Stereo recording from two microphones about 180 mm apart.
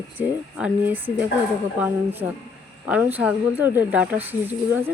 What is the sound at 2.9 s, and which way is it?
Speech, 10° right (ahead or behind).